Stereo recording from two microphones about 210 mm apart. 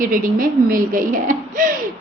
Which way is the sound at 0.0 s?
40° right (ahead or behind).